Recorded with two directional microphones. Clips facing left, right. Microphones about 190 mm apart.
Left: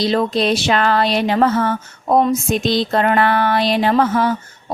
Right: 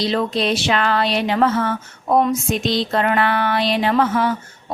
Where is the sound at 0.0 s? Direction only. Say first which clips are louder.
Left 3 dB; 40° left (ahead or behind).